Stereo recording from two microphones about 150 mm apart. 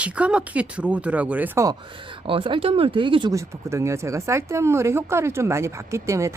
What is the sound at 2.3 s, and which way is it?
Speech, 35° right (ahead or behind).